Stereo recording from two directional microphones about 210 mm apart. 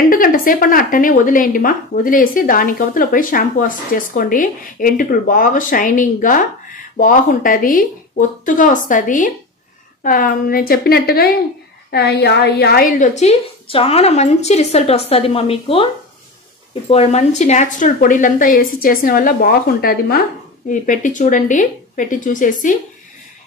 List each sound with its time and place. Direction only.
0.1 s a woman's voice: 40° left (ahead or behind)
16.9 s a woman's voice: 30° left (ahead or behind)